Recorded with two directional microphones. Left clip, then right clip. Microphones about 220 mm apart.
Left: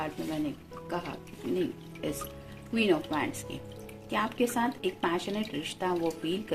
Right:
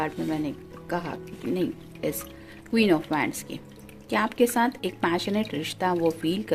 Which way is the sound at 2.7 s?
50° right (ahead or behind).